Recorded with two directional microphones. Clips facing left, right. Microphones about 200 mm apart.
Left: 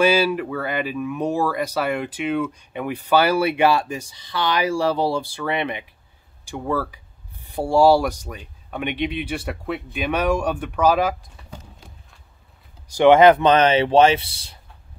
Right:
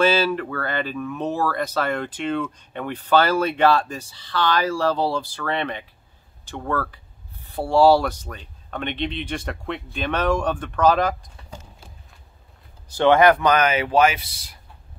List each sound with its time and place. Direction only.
0.0 s speech: 10° left (ahead or behind)
12.9 s speech: 15° left (ahead or behind)